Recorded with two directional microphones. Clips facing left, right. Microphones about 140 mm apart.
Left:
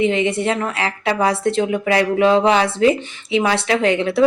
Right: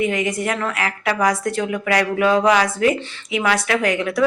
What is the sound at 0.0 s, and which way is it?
A woman's voice, 25° left (ahead or behind).